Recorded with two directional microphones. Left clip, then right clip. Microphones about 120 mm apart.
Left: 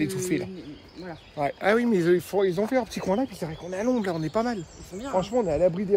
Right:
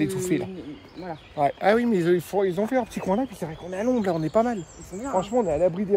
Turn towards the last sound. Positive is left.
turn(degrees=20)  # may be behind; listen again after turning